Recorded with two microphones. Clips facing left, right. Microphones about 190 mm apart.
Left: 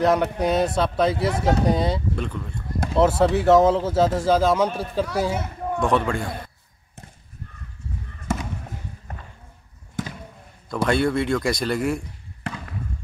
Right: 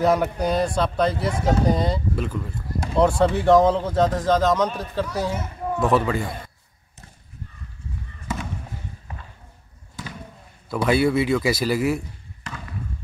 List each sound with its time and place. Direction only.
0.0 s speech: centre (ahead or behind)
5.8 s speech: 5° right (ahead or behind)
10.0 s basketball bounce: 50° left (ahead or behind)
10.7 s speech: 5° right (ahead or behind)